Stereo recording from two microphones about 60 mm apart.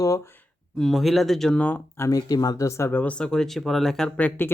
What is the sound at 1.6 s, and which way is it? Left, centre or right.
Speech, left.